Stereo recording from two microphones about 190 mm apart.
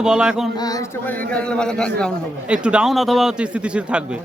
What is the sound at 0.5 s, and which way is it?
A man's voice, 20° left (ahead or behind).